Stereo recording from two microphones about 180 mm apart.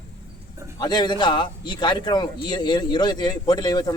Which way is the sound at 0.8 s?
25° left (ahead or behind).